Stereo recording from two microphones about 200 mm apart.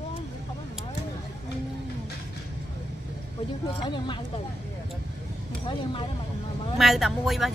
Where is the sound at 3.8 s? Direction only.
25° left (ahead or behind).